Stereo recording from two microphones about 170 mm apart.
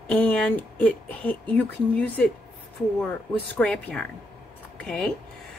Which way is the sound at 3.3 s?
5° left (ahead or behind).